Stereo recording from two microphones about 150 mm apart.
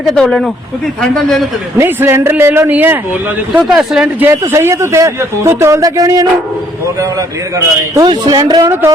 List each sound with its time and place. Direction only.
0.0 s speech: 5° left (ahead or behind)
1.8 s speech: 20° right (ahead or behind)
4.3 s a man's voice: 20° right (ahead or behind)
8.6 s speech: 15° right (ahead or behind)